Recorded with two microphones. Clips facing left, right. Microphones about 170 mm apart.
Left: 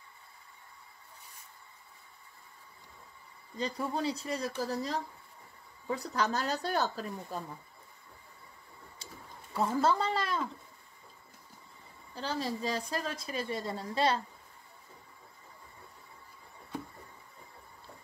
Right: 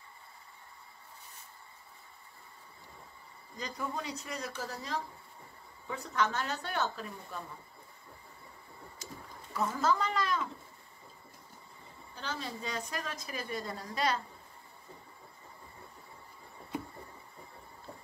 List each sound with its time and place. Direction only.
3.5 s speech: 30° left (ahead or behind)
8.9 s a sound: 30° left (ahead or behind)
12.2 s a woman's voice: 35° left (ahead or behind)